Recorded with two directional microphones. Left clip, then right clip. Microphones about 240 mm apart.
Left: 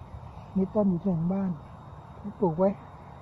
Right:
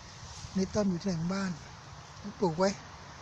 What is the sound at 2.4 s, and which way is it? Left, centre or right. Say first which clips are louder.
Speech: left 4 dB; centre.